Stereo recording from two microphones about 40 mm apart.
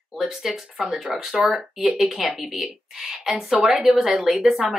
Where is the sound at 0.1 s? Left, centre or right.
Centre.